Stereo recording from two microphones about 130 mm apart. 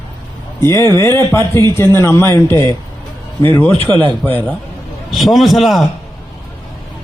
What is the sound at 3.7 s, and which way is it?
Speech, 45° right (ahead or behind).